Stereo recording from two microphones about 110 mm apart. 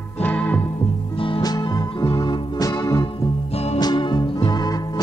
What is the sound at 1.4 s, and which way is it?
Music, 35° left (ahead or behind).